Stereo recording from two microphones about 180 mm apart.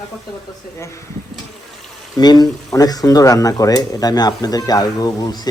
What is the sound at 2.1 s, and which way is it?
A man's voice, 20° left (ahead or behind).